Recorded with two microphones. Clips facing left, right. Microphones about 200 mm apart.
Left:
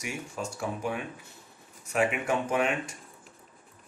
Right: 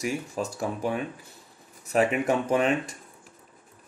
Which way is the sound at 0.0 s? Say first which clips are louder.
Right 6 dB; 35° right (ahead or behind).